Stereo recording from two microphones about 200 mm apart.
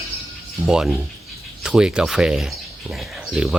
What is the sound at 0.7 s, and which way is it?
Speech, 5° right (ahead or behind).